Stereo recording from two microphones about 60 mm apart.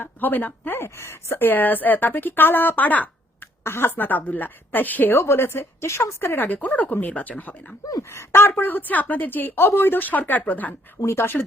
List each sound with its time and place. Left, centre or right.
0.0 s a woman's voice: left
3.6 s a woman's voice: left
5.2 s a woman's voice: left
8.1 s a woman's voice: left
11.0 s speech: left